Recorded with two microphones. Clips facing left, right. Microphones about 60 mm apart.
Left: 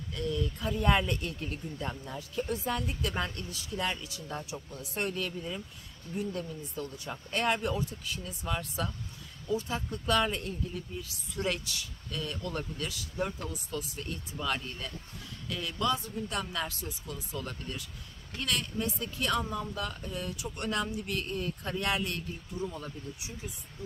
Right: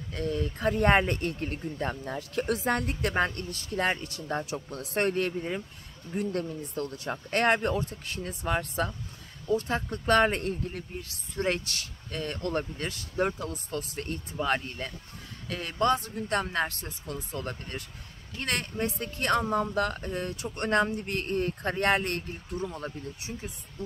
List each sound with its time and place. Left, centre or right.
0.1 s speech: right
2.3 s speech: right
6.1 s speech: right
11.6 s speech: right
12.1 s speech: right
22.7 s speech: right